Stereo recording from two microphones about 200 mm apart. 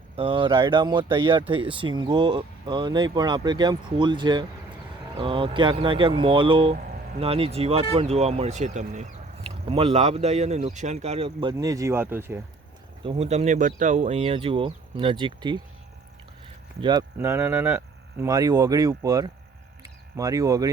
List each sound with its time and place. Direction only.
0.2 s speech: 25° right (ahead or behind)
9.4 s speech: 25° right (ahead or behind); by 12.4 s 10° right (ahead or behind)
13.1 s speech: 30° right (ahead or behind)
16.8 s speech: 20° right (ahead or behind)